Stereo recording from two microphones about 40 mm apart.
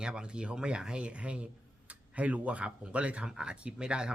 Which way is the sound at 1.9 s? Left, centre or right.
Right.